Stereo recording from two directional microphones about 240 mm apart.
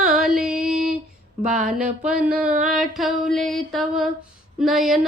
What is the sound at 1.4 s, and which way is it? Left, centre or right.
Speech, right.